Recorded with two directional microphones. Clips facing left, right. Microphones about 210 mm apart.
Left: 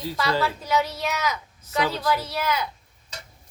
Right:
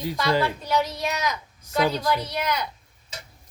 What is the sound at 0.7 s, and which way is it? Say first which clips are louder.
Speech: even; 5° left (ahead or behind).